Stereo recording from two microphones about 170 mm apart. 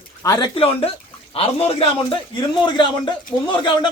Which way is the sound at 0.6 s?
35° left (ahead or behind).